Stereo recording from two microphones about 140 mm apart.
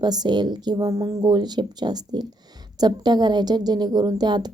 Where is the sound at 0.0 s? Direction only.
30° right (ahead or behind).